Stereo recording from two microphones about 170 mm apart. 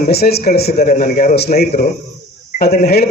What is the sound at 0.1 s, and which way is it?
Speech, 70° left (ahead or behind).